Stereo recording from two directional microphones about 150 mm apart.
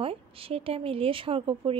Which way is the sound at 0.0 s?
40° right (ahead or behind).